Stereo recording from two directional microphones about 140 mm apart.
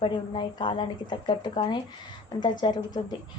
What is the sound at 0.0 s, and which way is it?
Speech, 35° left (ahead or behind).